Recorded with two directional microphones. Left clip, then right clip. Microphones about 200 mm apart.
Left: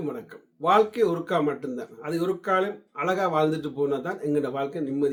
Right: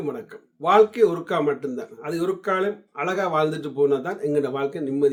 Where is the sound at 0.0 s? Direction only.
20° right (ahead or behind).